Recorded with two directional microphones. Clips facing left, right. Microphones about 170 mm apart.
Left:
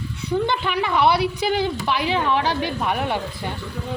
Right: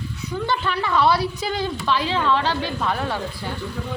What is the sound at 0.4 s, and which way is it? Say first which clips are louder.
A woman's voice: left 1 dB; 15° left (ahead or behind).